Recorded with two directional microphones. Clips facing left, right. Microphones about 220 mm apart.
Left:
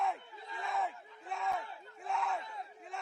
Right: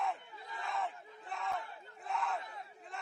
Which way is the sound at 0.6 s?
Centre (ahead or behind).